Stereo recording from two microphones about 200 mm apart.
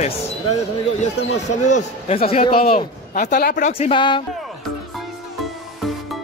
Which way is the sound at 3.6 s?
30° left (ahead or behind).